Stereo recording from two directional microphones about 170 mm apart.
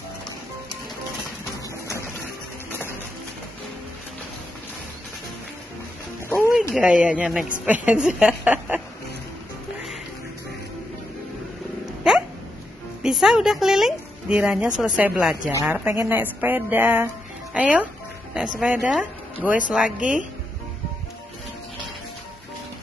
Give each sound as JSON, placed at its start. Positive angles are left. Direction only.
{"t": 6.2, "sound": "a sound", "side_deg": 15}
{"t": 7.0, "sound": "a woman's voice", "side_deg": -5}
{"t": 12.1, "sound": "hiccup", "side_deg": -5}
{"t": 13.0, "sound": "a woman's voice", "side_deg": -5}